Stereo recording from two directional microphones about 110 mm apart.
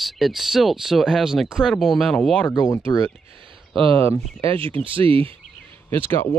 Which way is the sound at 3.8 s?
55° right (ahead or behind).